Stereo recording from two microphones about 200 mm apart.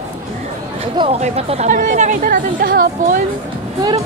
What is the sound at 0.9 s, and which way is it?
Speech, 30° right (ahead or behind).